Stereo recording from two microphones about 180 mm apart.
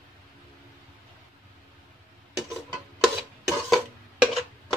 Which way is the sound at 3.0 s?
Centre (ahead or behind).